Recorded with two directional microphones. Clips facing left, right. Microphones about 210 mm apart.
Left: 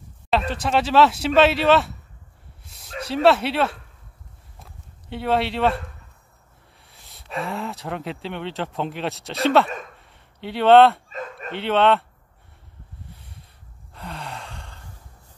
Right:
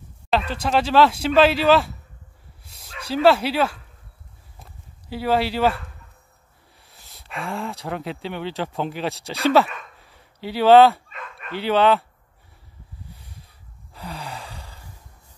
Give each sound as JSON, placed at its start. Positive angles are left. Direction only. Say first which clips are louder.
{"t": 0.3, "sound": "speech", "louder": "even", "side_deg": 0}
{"t": 2.6, "sound": "a sound", "louder": "even", "side_deg": 0}
{"t": 3.1, "sound": "speech", "louder": "right 1 dB", "side_deg": 0}
{"t": 5.1, "sound": "speech", "louder": "right 1 dB", "side_deg": 0}
{"t": 6.8, "sound": "speech", "louder": "even", "side_deg": 0}
{"t": 9.9, "sound": "a sound", "louder": "right 1 dB", "side_deg": 0}
{"t": 11.1, "sound": "dog", "louder": "left 7 dB", "side_deg": 40}
{"t": 11.5, "sound": "speech", "louder": "right 1 dB", "side_deg": 0}
{"t": 13.1, "sound": "a sound", "louder": "right 1 dB", "side_deg": 0}
{"t": 13.9, "sound": "gasp", "louder": "right 1 dB", "side_deg": 0}